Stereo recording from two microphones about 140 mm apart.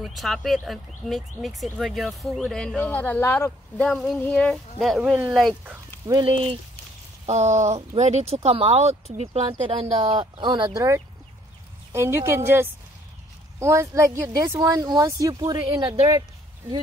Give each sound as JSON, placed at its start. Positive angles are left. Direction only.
{"t": 0.0, "sound": "speech", "side_deg": 0}
{"t": 6.0, "sound": "speech", "side_deg": -25}
{"t": 7.2, "sound": "a sound", "side_deg": -55}
{"t": 8.0, "sound": "speech", "side_deg": -55}
{"t": 9.5, "sound": "speech", "side_deg": -35}
{"t": 16.2, "sound": "a sound", "side_deg": -30}